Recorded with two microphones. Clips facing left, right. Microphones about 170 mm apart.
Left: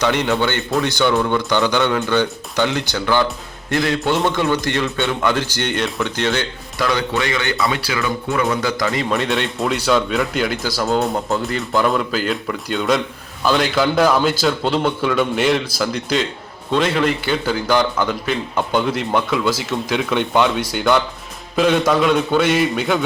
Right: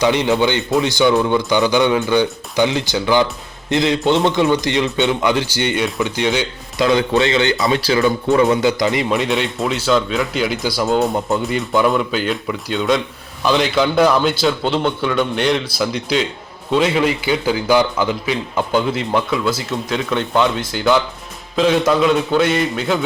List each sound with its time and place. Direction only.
0.2 s a man's voice: 15° right (ahead or behind)
7.9 s speech: 35° right (ahead or behind)
8.3 s a man's voice: 20° right (ahead or behind)
9.0 s a man's voice: centre (ahead or behind)
10.6 s a man's voice: 15° right (ahead or behind)
10.8 s a man's voice: centre (ahead or behind)